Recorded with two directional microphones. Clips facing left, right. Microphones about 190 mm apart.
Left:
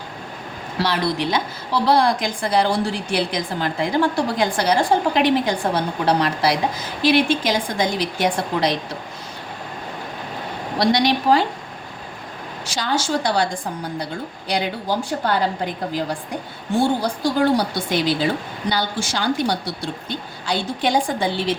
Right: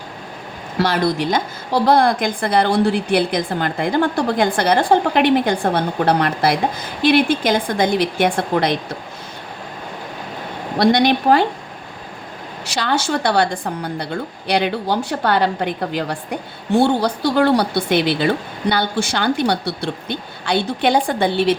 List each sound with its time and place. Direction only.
0.8 s a woman's voice: 50° right (ahead or behind)
10.8 s a woman's voice: 55° right (ahead or behind)
12.6 s a woman's voice: 65° right (ahead or behind)